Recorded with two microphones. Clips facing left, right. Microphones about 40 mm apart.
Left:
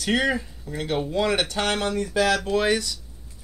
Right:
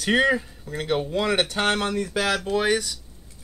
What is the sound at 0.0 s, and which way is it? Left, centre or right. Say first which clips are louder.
Speech: right 3 dB; right.